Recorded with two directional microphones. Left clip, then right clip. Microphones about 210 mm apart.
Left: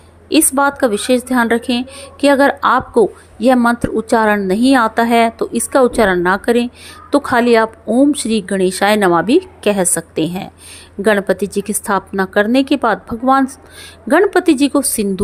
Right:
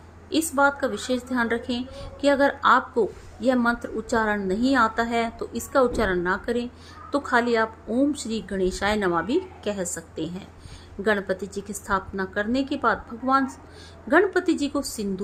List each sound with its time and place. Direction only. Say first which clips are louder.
0.3 s a woman's voice: left 8 dB; 35° left (ahead or behind)